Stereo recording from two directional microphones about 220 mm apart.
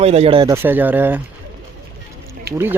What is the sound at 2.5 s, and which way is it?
Speech, 45° right (ahead or behind).